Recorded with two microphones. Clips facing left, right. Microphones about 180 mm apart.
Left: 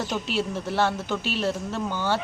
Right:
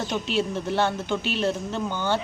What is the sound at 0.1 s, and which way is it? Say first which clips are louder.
Speech: right 2 dB; 5° left (ahead or behind).